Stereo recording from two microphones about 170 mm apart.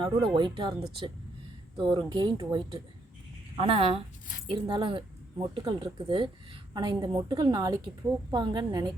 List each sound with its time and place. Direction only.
0.3 s speech: 25° right (ahead or behind)